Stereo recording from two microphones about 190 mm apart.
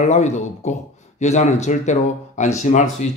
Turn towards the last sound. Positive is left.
turn(degrees=35)  # may be behind; listen again after turning